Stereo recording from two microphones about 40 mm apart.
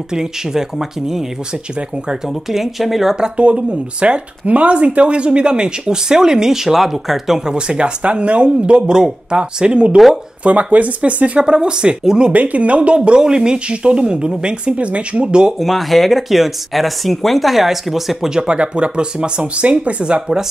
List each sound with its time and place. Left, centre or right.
0.1 s speech: centre
2.2 s speech: centre
3.3 s speech: right; by 7.4 s centre
7.4 s speech: right
10.4 s speech: right; by 12.3 s centre
12.3 s speech: right
15.6 s speech: centre
18.5 s speech: right
20.2 s speech: centre